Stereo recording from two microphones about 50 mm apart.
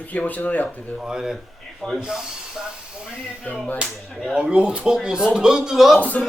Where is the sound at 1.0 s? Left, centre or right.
Centre.